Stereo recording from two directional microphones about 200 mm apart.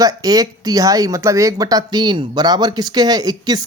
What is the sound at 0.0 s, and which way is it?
Speech, 20° right (ahead or behind).